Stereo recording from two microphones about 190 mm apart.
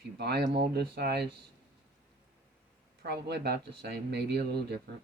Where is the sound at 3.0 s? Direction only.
60° right (ahead or behind).